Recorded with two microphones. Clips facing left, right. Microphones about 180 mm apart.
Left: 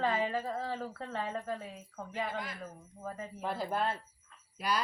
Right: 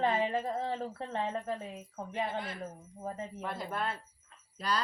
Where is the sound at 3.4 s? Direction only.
30° left (ahead or behind).